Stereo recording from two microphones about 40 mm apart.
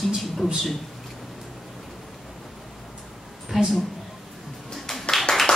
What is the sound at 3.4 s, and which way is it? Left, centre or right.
Speech, centre.